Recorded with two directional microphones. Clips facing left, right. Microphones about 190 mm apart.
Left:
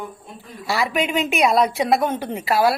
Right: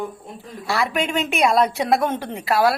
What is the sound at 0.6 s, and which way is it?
A woman's voice, centre (ahead or behind).